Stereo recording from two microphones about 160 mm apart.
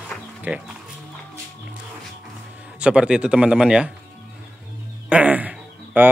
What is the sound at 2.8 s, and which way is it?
Speech, 5° right (ahead or behind).